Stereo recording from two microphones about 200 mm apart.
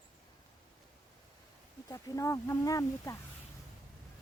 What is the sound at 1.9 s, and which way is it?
Speech, 15° left (ahead or behind).